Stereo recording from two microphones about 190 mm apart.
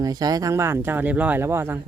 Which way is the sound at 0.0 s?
20° right (ahead or behind).